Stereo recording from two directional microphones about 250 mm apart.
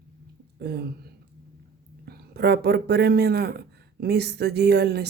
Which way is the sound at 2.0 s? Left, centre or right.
Right.